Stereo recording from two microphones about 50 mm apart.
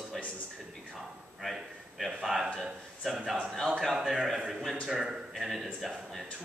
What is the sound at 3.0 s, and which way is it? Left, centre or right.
Speech, centre.